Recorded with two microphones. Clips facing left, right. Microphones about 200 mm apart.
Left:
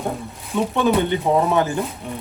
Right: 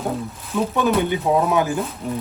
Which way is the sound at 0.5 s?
Centre (ahead or behind).